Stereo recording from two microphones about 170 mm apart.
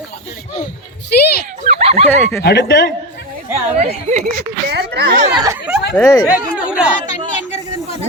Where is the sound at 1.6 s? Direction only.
35° right (ahead or behind).